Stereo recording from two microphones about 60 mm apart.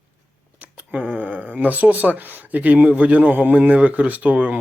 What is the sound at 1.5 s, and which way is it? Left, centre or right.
Speech, right.